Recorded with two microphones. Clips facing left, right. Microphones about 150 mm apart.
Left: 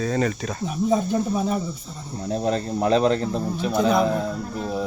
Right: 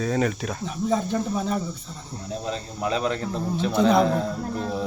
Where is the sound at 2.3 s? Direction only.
45° left (ahead or behind).